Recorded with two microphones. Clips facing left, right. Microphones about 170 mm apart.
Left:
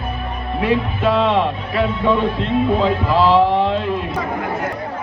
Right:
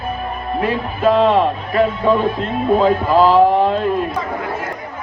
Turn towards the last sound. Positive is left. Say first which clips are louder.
# right 3 dB
turn(degrees=-45)  # may be behind; listen again after turning